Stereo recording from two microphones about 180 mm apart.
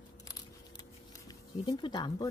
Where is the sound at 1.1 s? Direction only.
20° left (ahead or behind).